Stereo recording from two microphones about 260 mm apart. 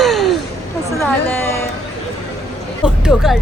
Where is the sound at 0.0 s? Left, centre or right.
Centre.